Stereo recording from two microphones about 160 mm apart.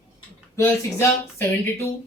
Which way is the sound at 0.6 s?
15° left (ahead or behind).